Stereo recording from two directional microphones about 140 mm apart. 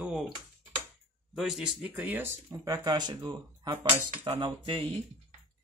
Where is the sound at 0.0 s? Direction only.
5° right (ahead or behind).